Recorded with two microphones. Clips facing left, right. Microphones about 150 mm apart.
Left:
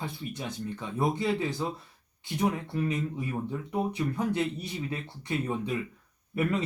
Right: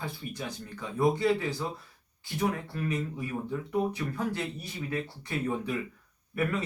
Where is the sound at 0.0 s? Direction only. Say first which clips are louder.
Left 1 dB; 20° left (ahead or behind).